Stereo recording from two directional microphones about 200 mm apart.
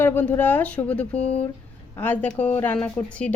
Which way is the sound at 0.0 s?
10° left (ahead or behind).